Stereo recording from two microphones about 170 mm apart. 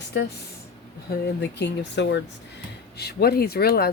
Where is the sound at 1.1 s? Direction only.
90° left.